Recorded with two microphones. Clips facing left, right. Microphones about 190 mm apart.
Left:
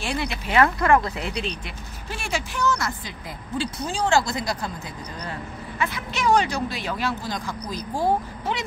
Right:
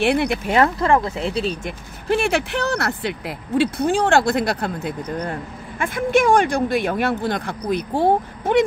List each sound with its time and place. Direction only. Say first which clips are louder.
0.0 s speech: right 10 dB; 60° right (ahead or behind)
0.6 s speech: right 1 dB; 30° right (ahead or behind)
2.0 s speech: right 11 dB; 60° right (ahead or behind)